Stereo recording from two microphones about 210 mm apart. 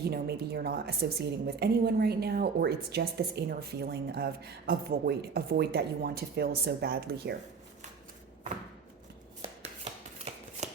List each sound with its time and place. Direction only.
0.0 s a woman's voice: 50° right (ahead or behind)
10.6 s shuffling cards: 35° right (ahead or behind)